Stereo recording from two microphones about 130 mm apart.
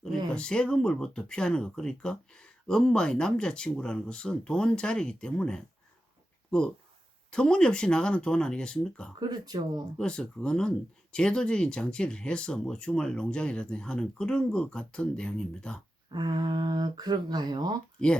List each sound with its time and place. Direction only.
0.3 s speech: 5° left (ahead or behind)
9.1 s speech: 35° right (ahead or behind)
10.0 s speech: 5° left (ahead or behind)
16.0 s speech: 35° right (ahead or behind)